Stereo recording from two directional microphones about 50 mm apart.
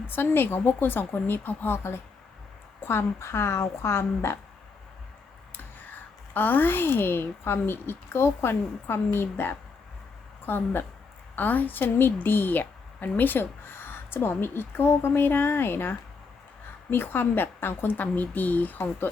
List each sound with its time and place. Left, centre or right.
0.1 s a woman's voice: left
5.5 s a woman's voice: left
17.9 s a woman's voice: left